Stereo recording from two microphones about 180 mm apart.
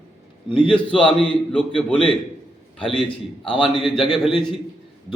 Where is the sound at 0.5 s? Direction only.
30° left (ahead or behind).